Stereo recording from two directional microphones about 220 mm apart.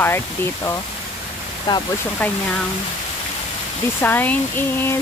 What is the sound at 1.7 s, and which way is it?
Speech, 20° left (ahead or behind).